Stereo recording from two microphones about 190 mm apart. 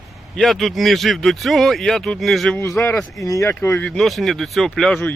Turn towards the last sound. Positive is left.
turn(degrees=5)  # may be behind; listen again after turning